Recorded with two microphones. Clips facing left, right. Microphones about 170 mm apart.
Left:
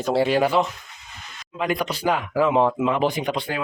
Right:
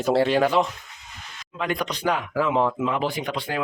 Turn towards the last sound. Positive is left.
turn(degrees=20)  # may be behind; listen again after turning